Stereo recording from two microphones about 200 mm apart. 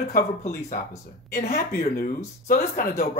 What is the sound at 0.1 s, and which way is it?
Speech, 40° left (ahead or behind).